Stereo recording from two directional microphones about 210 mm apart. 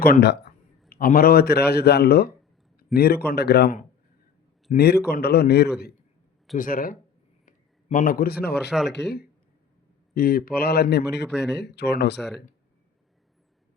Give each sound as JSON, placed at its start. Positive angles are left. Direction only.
{"t": 0.0, "sound": "a man's voice", "side_deg": 50}
{"t": 11.3, "sound": "speech", "side_deg": 0}
{"t": 11.5, "sound": "a man's voice", "side_deg": 55}